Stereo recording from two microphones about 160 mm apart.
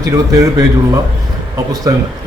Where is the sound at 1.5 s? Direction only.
25° right (ahead or behind).